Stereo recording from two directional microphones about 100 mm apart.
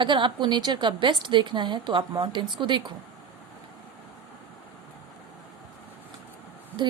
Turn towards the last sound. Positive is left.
turn(degrees=-50)  # may be behind; listen again after turning